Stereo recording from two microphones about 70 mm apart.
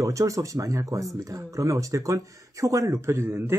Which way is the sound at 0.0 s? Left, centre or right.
Right.